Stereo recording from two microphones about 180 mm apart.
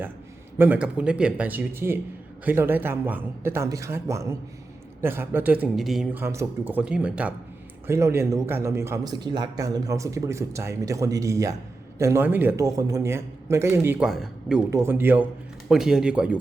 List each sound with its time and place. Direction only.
0.6 s a man's voice: 10° right (ahead or behind)
6.2 s a man's voice: 15° right (ahead or behind)
14.7 s a man's voice: 15° right (ahead or behind)